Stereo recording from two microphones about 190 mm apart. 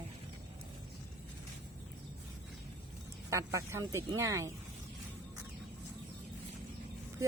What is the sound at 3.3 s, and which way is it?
Speech, 15° right (ahead or behind).